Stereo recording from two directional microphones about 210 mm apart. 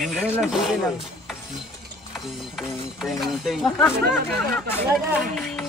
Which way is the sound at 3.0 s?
Centre (ahead or behind).